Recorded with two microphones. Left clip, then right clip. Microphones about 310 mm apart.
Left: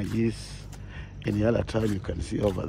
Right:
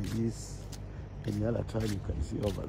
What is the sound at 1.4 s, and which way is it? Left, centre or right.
Speech, left.